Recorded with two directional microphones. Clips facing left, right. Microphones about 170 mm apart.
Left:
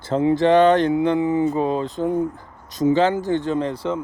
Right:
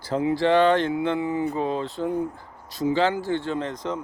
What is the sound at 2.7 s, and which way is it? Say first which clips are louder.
Speech: left 5 dB; 20° left (ahead or behind).